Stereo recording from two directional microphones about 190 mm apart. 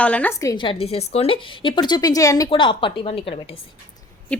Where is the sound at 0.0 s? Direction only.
10° left (ahead or behind); by 3.3 s 30° left (ahead or behind).